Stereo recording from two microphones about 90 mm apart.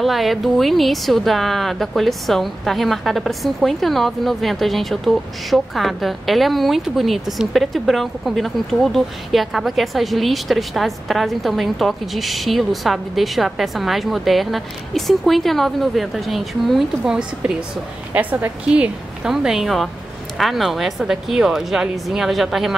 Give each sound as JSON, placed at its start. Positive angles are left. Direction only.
{"t": 0.0, "sound": "a woman's voice", "side_deg": 0}
{"t": 18.7, "sound": "a woman's voice", "side_deg": -10}